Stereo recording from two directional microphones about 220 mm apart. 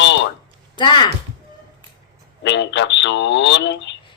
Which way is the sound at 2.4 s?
55° left (ahead or behind).